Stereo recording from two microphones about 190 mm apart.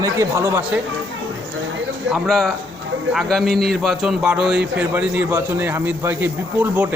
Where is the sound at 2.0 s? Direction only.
Centre (ahead or behind).